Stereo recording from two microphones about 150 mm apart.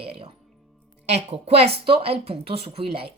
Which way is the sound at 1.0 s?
45° right (ahead or behind).